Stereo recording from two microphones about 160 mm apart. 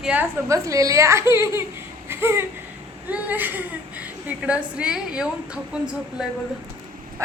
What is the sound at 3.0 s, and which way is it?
A woman's voice, 10° right (ahead or behind).